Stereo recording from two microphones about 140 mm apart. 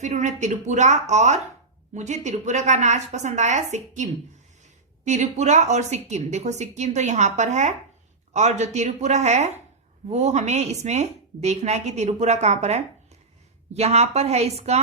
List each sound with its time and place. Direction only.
0.0 s a woman's voice: 60° right (ahead or behind)